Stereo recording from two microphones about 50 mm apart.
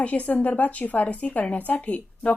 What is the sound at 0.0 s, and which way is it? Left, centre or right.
A woman's voice, left.